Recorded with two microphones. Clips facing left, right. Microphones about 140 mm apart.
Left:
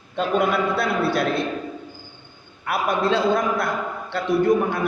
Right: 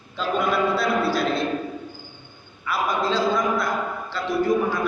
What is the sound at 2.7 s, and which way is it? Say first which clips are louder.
A man's voice: left 2 dB; 60° left (ahead or behind).